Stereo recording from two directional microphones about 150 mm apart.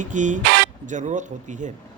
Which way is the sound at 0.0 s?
55° right (ahead or behind).